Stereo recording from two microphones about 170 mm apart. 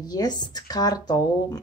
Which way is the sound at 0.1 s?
25° left (ahead or behind).